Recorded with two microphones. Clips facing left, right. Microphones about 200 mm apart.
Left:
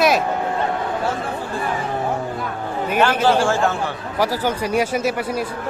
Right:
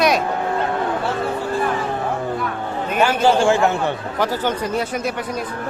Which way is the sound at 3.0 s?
10° right (ahead or behind).